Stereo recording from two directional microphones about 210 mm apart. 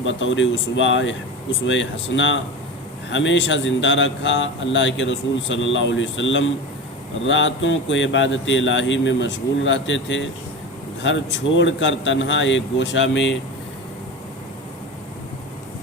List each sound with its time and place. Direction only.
0.0 s speech: 60° left (ahead or behind)